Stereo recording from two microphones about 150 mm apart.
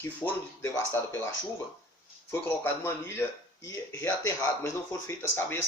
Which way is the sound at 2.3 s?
15° left (ahead or behind).